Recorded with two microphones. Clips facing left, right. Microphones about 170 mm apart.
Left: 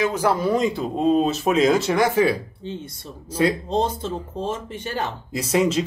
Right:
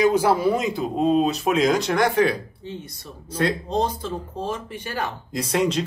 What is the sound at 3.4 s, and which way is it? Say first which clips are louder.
Speech: left 3 dB; 5° left (ahead or behind).